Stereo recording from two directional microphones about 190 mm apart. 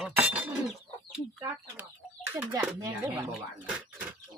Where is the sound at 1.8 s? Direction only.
10° right (ahead or behind).